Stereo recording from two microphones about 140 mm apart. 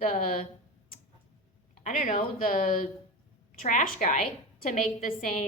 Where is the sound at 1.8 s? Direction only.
70° left (ahead or behind).